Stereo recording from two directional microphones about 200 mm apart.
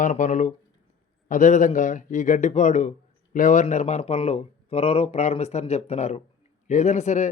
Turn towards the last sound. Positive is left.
turn(degrees=35)  # may be behind; listen again after turning